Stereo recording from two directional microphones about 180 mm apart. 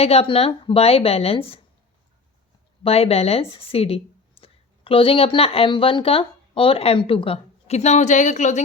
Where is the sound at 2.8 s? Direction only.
35° left (ahead or behind).